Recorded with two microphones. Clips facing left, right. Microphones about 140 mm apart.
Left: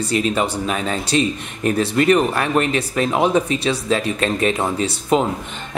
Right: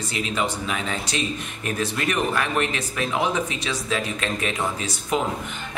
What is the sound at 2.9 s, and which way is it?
Speech, 35° left (ahead or behind).